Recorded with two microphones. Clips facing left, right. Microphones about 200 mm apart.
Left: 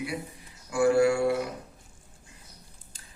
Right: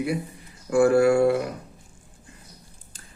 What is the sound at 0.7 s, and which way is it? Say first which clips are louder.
Speech: right 4 dB; 55° right (ahead or behind).